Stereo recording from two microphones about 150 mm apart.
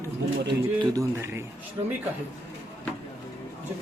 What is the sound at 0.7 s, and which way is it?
Speech, 25° right (ahead or behind).